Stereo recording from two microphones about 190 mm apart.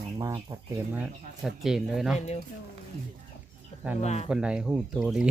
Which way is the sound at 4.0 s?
35° left (ahead or behind).